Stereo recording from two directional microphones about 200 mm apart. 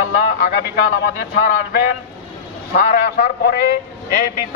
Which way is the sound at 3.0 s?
55° left (ahead or behind).